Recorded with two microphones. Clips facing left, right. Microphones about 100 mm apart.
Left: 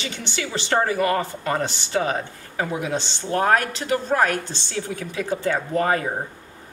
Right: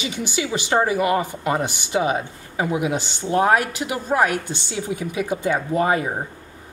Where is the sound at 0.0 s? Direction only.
10° right (ahead or behind).